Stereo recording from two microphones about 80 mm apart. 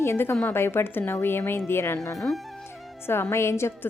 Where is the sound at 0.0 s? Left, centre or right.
Left.